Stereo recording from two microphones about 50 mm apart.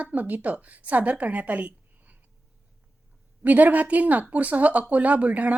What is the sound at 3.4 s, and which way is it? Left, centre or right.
A woman's voice, right.